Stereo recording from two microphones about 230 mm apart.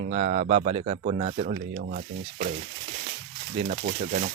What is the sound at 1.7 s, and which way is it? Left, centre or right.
Speech, right.